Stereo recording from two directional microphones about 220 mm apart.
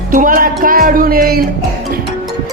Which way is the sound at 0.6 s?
40° right (ahead or behind).